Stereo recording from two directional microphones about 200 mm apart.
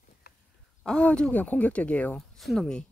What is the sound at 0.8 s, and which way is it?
Speech, 5° left (ahead or behind).